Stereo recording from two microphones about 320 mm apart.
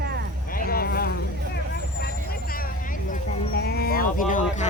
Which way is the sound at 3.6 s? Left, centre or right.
Left.